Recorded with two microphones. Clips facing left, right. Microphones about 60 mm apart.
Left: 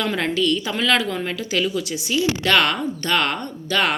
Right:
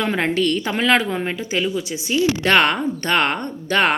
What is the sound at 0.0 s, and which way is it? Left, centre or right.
A woman's voice, right.